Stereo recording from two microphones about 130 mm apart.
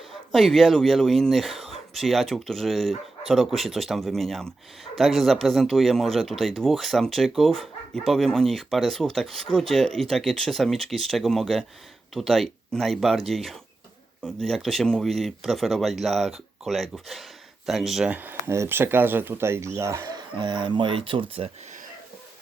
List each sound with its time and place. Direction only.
0.3 s speech: centre (ahead or behind); by 21.5 s 45° right (ahead or behind)